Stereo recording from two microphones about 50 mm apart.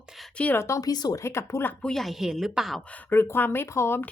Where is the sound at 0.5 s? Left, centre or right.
Left.